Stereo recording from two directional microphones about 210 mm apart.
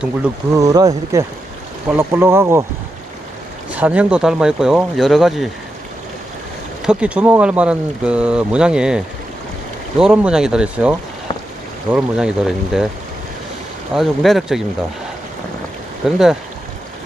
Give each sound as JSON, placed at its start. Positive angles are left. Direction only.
{"t": 0.5, "sound": "speech", "side_deg": -15}
{"t": 3.7, "sound": "speech", "side_deg": -5}
{"t": 6.8, "sound": "speech", "side_deg": -5}
{"t": 13.9, "sound": "speech", "side_deg": 0}
{"t": 16.0, "sound": "speech", "side_deg": 0}